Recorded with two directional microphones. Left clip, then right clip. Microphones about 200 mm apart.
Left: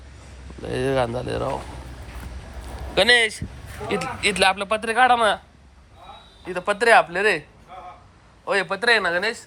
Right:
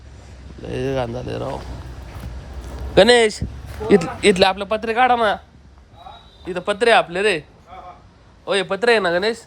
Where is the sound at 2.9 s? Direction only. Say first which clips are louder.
Right 4 dB; 25° right (ahead or behind).